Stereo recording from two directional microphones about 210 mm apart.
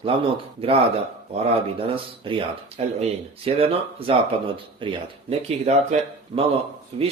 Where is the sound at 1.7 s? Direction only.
25° right (ahead or behind).